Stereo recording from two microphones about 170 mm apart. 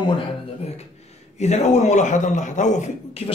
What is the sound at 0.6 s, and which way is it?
A man's voice, 35° left (ahead or behind).